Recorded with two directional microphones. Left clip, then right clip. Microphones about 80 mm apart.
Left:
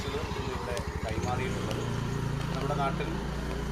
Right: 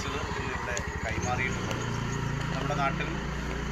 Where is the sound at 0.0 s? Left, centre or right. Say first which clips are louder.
Right 2 dB; right.